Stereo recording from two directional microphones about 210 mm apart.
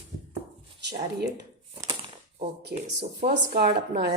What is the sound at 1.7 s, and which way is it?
Shuffling cards, 20° right (ahead or behind).